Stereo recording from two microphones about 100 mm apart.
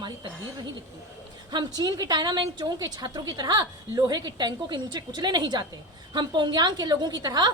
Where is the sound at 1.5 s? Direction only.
45° right (ahead or behind).